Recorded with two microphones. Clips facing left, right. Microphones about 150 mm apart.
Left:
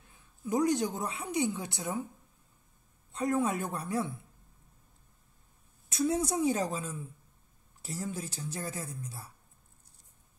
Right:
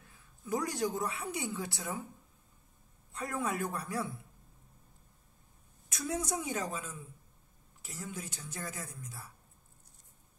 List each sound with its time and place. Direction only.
0.5 s a woman's voice: 20° left (ahead or behind)
3.1 s a woman's voice: 25° left (ahead or behind)
5.9 s a woman's voice: 25° left (ahead or behind)